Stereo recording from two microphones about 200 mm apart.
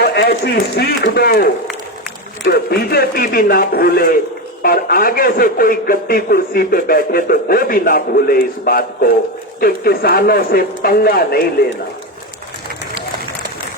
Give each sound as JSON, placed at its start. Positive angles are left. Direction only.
{"t": 0.0, "sound": "a man's voice", "side_deg": 55}